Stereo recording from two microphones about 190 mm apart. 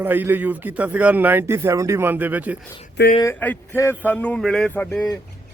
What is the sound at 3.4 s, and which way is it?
A man's voice, 10° left (ahead or behind).